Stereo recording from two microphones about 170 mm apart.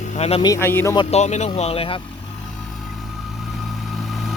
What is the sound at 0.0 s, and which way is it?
Speech, 40° left (ahead or behind).